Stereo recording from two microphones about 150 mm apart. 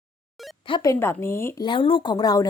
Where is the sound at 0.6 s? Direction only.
35° left (ahead or behind).